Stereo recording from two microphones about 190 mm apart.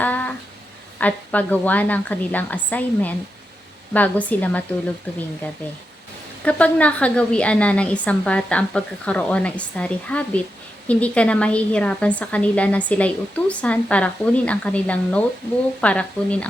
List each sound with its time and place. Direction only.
0.0 s a sound: 10° left (ahead or behind)
0.9 s a woman's voice: 10° left (ahead or behind)
6.4 s a woman's voice: 5° left (ahead or behind)